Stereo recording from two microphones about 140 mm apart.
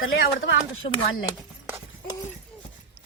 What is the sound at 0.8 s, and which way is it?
Speech, 60° left (ahead or behind).